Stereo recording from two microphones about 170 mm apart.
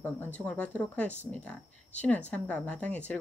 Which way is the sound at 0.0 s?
10° left (ahead or behind).